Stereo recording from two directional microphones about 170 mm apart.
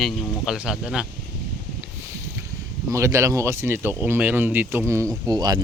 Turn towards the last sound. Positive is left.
turn(degrees=-25)  # may be behind; listen again after turning